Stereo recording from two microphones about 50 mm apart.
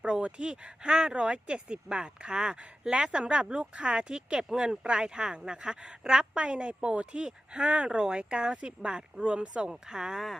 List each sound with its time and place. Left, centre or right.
0.0 s speech: right